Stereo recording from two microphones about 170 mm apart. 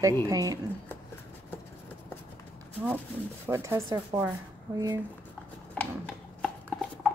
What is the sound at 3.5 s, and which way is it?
Speech, 15° right (ahead or behind).